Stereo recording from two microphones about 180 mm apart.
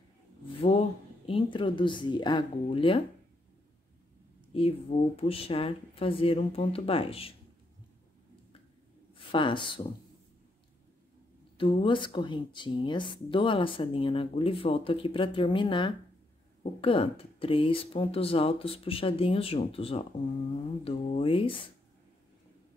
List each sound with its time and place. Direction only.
0.6 s speech: 30° left (ahead or behind)
4.6 s speech: 35° left (ahead or behind)
9.1 s a woman's voice: 25° left (ahead or behind)
11.5 s speech: 30° left (ahead or behind)